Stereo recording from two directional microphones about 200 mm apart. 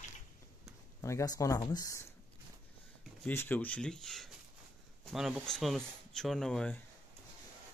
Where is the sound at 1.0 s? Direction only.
15° left (ahead or behind).